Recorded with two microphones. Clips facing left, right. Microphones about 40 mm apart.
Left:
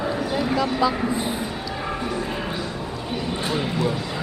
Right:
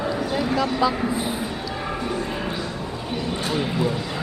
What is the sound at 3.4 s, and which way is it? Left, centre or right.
Speech, centre.